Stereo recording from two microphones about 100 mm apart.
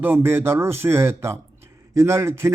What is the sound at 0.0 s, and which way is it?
A man's voice, 20° right (ahead or behind).